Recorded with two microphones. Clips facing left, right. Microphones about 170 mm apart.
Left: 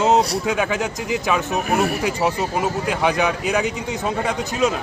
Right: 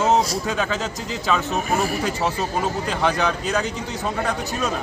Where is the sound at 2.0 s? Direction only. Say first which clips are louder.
Left 2 dB; 10° left (ahead or behind).